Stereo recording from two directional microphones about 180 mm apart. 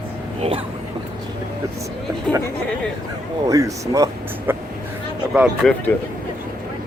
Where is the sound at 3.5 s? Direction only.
20° right (ahead or behind).